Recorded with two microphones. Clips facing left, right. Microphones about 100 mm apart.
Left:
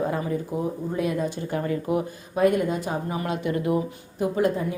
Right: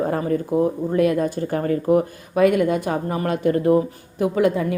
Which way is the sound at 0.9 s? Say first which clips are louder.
Right 7 dB; 65° right (ahead or behind).